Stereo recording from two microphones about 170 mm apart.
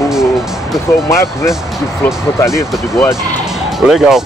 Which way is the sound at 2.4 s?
15° left (ahead or behind).